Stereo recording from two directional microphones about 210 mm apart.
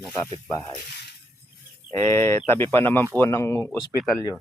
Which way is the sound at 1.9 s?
10° left (ahead or behind).